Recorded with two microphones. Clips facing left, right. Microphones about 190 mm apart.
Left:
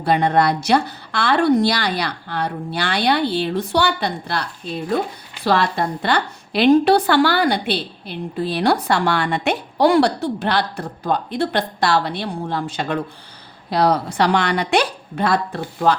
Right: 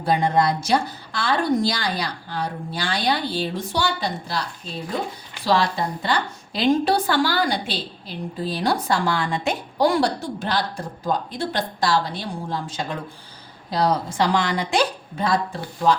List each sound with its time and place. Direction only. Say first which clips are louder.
0.0 s a woman's voice: left 3 dB; 65° left (ahead or behind)
5.5 s a woman's voice: left 2 dB; 60° left (ahead or behind)